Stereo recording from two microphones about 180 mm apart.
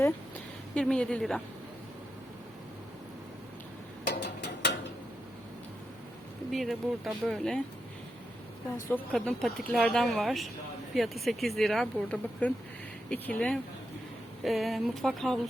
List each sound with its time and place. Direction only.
0.7 s speech: 5° left (ahead or behind)
4.1 s mechanisms: 70° left (ahead or behind)
6.5 s speech: centre (ahead or behind)
8.9 s speech: 5° left (ahead or behind)